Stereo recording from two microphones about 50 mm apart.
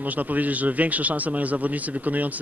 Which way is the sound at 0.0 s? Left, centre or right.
Right.